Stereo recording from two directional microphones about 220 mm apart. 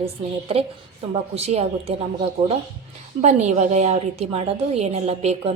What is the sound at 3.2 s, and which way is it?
A woman's voice, 30° right (ahead or behind).